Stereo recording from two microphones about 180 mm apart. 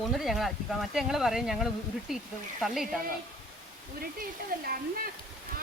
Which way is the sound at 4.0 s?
55° right (ahead or behind).